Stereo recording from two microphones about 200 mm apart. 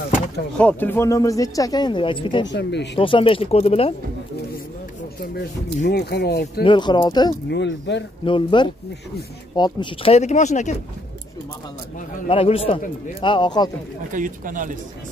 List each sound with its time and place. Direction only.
0.6 s speech: 10° left (ahead or behind); by 2.5 s 25° left (ahead or behind)
2.5 s speech: 60° left (ahead or behind)
3.0 s speech: 25° left (ahead or behind)
5.9 s speech: 55° left (ahead or behind)
6.6 s speech: 25° left (ahead or behind)
7.4 s speech: 60° left (ahead or behind)
8.3 s speech: 25° left (ahead or behind)
12.3 s speech: 30° left (ahead or behind)
14.1 s speech: 40° right (ahead or behind)